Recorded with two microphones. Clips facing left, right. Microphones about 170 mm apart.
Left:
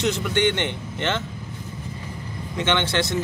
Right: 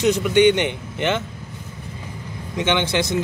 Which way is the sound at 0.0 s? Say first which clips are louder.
Right 7 dB; 15° right (ahead or behind).